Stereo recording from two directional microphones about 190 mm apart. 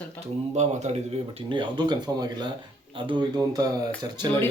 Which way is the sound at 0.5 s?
35° right (ahead or behind).